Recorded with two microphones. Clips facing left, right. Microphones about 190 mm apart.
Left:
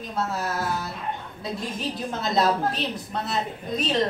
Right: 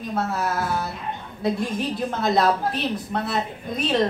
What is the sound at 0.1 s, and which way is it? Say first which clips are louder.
Speech: right 3 dB; 60° right (ahead or behind).